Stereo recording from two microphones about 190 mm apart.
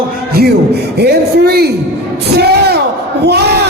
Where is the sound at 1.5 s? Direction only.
55° right (ahead or behind).